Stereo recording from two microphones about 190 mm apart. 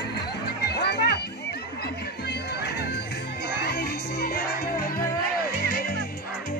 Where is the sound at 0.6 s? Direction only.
60° left (ahead or behind).